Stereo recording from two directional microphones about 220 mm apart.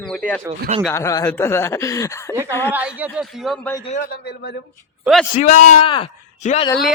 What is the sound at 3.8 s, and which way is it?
Speech, 35° left (ahead or behind).